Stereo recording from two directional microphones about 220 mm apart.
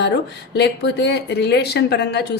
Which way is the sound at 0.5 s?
50° left (ahead or behind).